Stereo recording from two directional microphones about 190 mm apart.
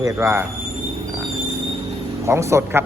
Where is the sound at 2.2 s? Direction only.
15° right (ahead or behind).